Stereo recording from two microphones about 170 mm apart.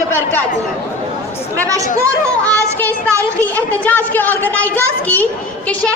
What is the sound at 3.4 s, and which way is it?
Speech, 10° left (ahead or behind).